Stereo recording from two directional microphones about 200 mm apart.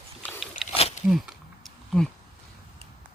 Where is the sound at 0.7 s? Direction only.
30° left (ahead or behind).